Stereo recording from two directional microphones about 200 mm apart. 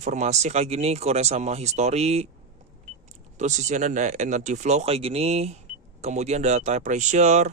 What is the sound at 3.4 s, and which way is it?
Speech, 35° right (ahead or behind).